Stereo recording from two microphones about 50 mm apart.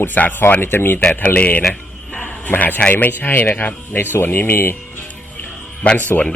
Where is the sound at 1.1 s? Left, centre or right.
Left.